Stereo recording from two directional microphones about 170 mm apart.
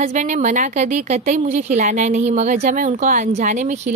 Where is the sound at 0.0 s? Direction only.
45° right (ahead or behind).